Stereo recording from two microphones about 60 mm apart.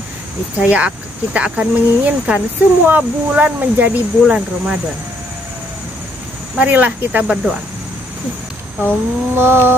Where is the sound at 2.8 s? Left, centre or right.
Right.